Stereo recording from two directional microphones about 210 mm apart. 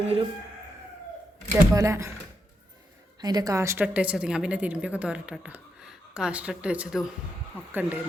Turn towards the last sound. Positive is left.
turn(degrees=-10)  # may be behind; listen again after turning